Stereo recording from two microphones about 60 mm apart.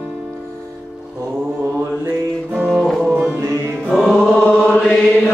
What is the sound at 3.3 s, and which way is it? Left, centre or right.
Music, right.